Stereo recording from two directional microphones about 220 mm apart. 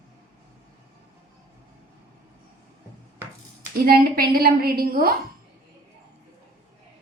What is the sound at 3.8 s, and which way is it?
A woman's voice, 45° right (ahead or behind).